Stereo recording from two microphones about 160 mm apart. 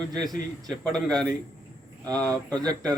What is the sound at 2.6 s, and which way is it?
Speech, 25° right (ahead or behind).